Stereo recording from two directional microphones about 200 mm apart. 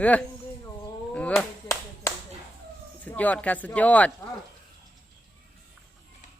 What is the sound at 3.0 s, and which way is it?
Speech, 10° left (ahead or behind).